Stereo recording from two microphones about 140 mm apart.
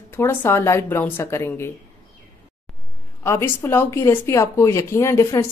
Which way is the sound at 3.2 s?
20° left (ahead or behind).